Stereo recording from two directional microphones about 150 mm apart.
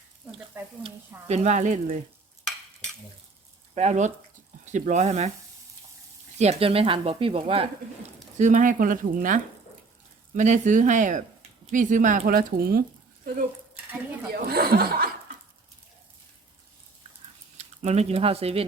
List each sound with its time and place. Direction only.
0.6 s speech: 10° right (ahead or behind)
1.3 s speech: 50° right (ahead or behind)
3.8 s speech: 50° right (ahead or behind)
6.4 s speech: 45° right (ahead or behind)
8.4 s speech: 55° right (ahead or behind); by 12.8 s 80° right
14.4 s speech: 90° right
17.6 s speech: 45° right (ahead or behind)